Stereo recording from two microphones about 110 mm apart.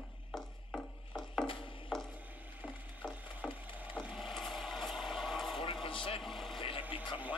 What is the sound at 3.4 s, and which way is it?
Wood, 10° right (ahead or behind).